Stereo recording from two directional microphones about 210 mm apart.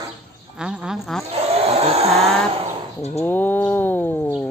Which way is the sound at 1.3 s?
30° right (ahead or behind).